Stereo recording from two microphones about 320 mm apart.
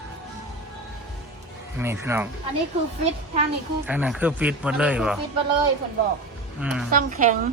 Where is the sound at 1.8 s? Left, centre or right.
Centre.